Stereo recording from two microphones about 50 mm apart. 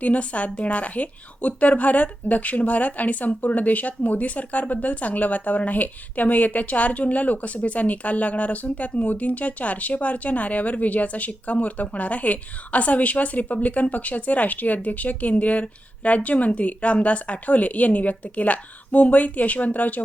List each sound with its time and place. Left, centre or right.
0.0 s speech: left